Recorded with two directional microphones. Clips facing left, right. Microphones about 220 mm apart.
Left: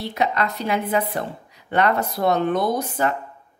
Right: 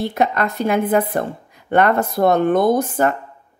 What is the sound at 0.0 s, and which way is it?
Speech, 50° right (ahead or behind).